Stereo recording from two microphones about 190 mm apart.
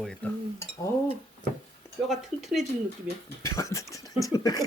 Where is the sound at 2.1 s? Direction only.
Centre (ahead or behind).